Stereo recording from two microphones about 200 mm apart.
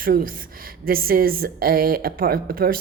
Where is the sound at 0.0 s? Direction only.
45° right (ahead or behind).